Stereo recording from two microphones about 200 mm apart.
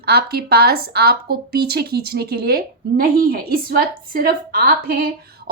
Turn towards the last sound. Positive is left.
turn(degrees=-50)  # may be behind; listen again after turning